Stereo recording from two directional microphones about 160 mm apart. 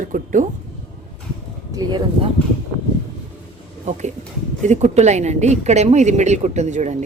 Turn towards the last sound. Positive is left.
turn(degrees=-50)  # may be behind; listen again after turning